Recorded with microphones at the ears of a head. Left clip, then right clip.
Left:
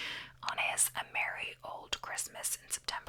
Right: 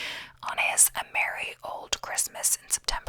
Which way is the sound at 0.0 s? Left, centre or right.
Right.